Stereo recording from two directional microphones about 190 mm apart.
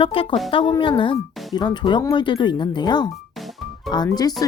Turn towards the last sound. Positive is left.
turn(degrees=20)  # may be behind; listen again after turning